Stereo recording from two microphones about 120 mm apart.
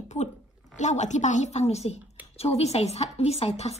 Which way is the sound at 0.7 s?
80° left.